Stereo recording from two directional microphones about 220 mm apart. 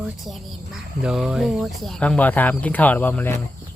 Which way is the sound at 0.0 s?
5° right (ahead or behind).